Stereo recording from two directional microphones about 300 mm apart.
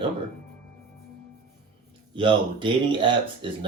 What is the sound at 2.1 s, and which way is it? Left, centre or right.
Speech, centre.